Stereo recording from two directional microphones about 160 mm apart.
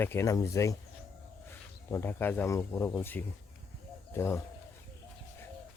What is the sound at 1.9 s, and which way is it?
Speech, 15° left (ahead or behind).